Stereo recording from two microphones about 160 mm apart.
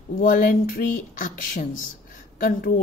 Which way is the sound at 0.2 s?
60° left (ahead or behind).